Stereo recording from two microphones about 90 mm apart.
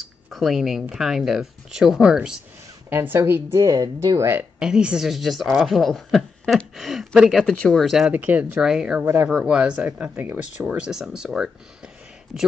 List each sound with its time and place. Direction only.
0.3 s speech: centre (ahead or behind)
2.9 s a woman's voice: 25° right (ahead or behind)
3.6 s speech: 45° right (ahead or behind)
4.2 s a woman's voice: 25° right (ahead or behind)
4.6 s speech: 10° right (ahead or behind)
7.5 s speech: 10° left (ahead or behind)
7.8 s speech: centre (ahead or behind)
8.1 s speech: 15° right (ahead or behind)
9.0 s a woman's voice: 25° right (ahead or behind)
9.3 s speech: 10° right (ahead or behind)
10.7 s speech: 10° right (ahead or behind)